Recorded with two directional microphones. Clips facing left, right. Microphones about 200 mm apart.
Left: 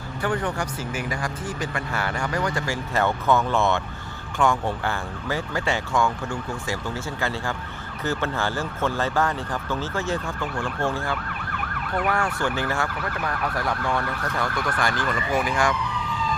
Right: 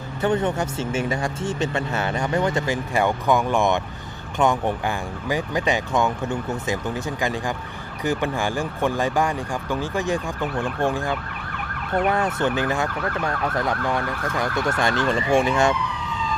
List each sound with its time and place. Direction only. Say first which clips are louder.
0.2 s emergency vehicle: right 4 dB; 20° right (ahead or behind)
8.0 s speech: right 3 dB; 15° right (ahead or behind)
12.0 s emergency vehicle: right 3 dB; 20° right (ahead or behind)